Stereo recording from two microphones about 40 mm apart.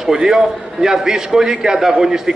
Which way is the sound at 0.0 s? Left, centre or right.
Centre.